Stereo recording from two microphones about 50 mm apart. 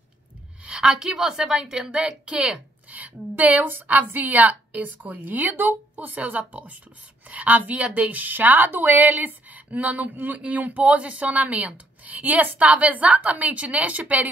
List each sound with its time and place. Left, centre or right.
0.7 s a woman's voice: centre